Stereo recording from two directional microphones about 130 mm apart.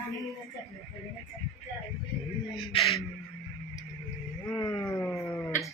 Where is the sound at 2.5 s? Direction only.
35° left (ahead or behind).